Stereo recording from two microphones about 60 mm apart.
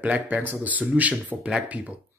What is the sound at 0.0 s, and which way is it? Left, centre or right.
Speech, right.